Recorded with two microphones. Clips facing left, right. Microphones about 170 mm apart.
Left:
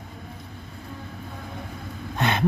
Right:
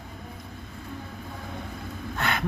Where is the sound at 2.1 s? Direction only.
20° left (ahead or behind).